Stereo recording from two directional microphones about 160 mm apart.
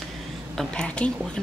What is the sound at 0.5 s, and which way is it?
Speech, 5° left (ahead or behind).